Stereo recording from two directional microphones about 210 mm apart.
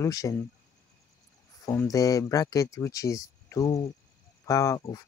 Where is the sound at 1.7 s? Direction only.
15° left (ahead or behind).